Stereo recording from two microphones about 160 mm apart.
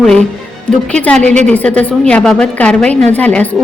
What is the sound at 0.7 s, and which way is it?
A woman's voice, 5° left (ahead or behind).